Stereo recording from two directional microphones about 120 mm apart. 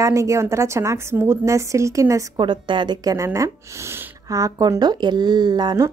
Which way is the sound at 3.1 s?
25° right (ahead or behind).